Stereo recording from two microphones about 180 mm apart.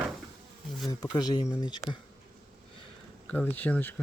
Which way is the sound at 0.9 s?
20° left (ahead or behind).